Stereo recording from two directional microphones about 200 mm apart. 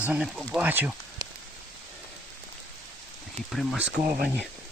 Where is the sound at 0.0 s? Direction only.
5° right (ahead or behind).